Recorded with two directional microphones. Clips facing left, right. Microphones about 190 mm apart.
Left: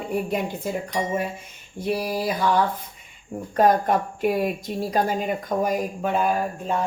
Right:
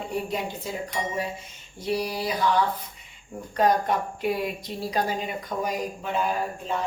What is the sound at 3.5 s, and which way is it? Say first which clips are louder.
Speech: left 4 dB; 50° left (ahead or behind).